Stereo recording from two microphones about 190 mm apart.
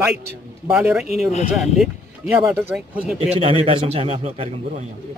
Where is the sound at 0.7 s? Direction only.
5° right (ahead or behind).